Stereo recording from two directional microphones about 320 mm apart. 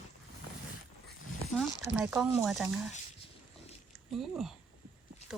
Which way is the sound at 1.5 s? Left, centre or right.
Centre.